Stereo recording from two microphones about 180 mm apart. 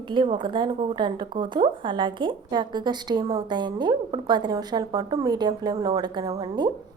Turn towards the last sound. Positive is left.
turn(degrees=-25)  # may be behind; listen again after turning